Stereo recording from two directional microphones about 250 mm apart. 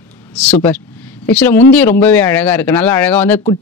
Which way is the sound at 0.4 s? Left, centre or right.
Centre.